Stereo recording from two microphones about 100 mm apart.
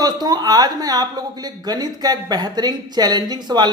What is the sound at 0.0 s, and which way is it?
Speech, 40° right (ahead or behind).